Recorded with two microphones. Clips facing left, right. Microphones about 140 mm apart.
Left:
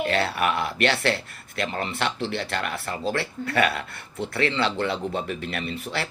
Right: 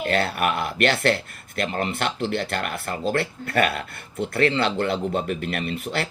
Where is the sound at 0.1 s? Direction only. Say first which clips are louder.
Right 1 dB; 50° right (ahead or behind).